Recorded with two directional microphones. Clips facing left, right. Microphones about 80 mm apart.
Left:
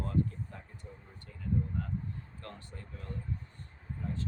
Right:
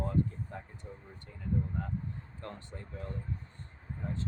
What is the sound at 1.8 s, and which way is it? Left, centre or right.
Speech, right.